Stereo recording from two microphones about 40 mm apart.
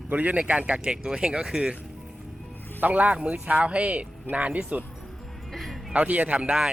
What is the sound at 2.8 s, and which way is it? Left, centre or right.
Speech, right.